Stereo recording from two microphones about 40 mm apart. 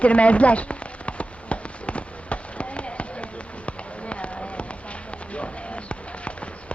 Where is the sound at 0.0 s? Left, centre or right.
Left.